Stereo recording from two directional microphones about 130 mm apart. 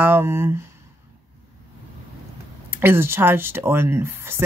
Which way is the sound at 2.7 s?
15° right (ahead or behind).